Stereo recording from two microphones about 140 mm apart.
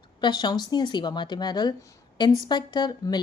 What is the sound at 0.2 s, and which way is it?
Speech, 30° left (ahead or behind).